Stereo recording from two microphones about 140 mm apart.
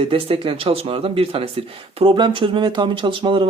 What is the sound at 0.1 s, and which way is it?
Speech, 40° right (ahead or behind).